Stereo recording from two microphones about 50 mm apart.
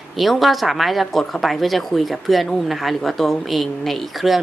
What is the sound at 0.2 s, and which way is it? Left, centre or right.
Speech, centre.